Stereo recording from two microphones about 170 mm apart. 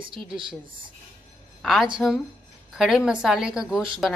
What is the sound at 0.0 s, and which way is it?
Speech, 30° right (ahead or behind).